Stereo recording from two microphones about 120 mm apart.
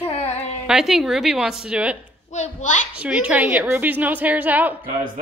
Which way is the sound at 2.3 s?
85° left.